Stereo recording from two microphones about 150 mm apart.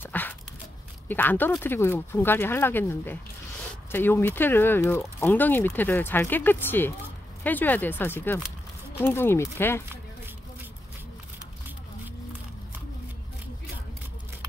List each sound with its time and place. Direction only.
0.0 s dog: 10° left (ahead or behind)
1.0 s speech: 10° left (ahead or behind)